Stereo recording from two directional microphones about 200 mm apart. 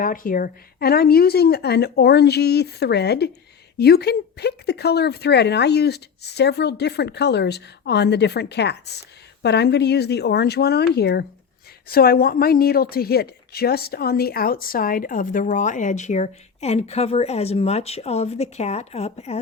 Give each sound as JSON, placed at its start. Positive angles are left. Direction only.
{"t": 0.0, "sound": "a woman's voice", "side_deg": 45}